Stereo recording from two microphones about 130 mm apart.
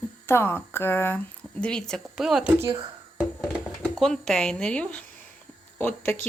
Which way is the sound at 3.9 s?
5° left (ahead or behind).